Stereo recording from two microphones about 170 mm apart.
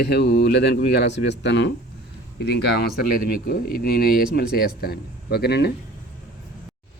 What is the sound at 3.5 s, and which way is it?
Speech, 65° left (ahead or behind).